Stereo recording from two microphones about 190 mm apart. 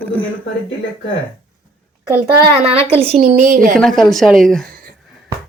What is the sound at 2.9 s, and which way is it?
Speech, 30° right (ahead or behind).